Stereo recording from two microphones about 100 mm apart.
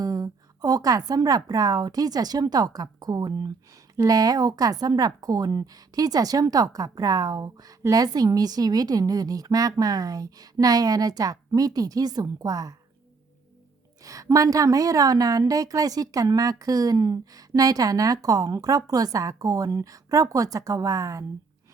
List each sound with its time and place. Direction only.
0.0 s a woman's voice: 35° right (ahead or behind)
14.0 s speech: 35° right (ahead or behind)